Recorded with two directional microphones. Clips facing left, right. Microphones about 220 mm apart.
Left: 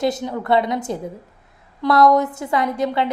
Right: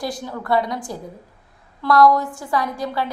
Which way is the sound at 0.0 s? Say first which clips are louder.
Left 6 dB; 20° left (ahead or behind).